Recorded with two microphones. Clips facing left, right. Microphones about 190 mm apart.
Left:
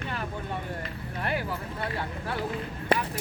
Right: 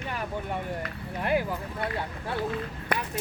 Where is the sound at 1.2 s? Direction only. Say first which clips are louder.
Right 4 dB; 15° right (ahead or behind).